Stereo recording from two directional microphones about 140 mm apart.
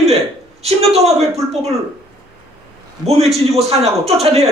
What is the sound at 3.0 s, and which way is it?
Speech, 50° right (ahead or behind).